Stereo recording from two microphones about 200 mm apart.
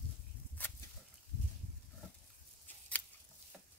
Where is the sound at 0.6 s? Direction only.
10° left (ahead or behind).